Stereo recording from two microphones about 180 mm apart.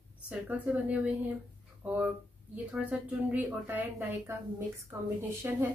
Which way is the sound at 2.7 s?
10° right (ahead or behind).